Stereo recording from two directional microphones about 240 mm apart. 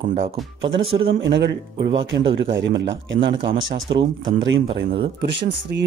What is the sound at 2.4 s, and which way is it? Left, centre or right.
Speech, right.